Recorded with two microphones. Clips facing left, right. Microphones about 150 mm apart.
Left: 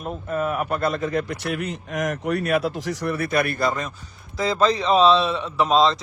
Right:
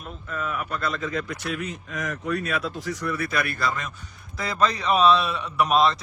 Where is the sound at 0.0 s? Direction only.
45° left (ahead or behind); by 3.2 s 80° left.